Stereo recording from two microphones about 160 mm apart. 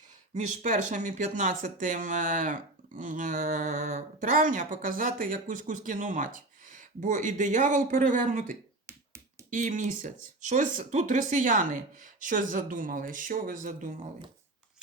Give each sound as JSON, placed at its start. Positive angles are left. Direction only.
{"t": 0.3, "sound": "speech", "side_deg": -50}
{"t": 8.9, "sound": "finger snapping", "side_deg": -15}
{"t": 9.6, "sound": "speech", "side_deg": -55}